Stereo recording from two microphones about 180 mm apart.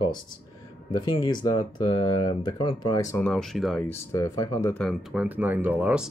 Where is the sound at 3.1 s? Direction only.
5° left (ahead or behind).